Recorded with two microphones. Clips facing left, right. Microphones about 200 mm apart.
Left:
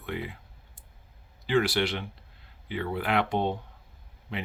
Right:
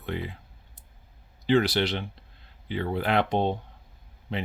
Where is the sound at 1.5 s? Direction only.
25° right (ahead or behind).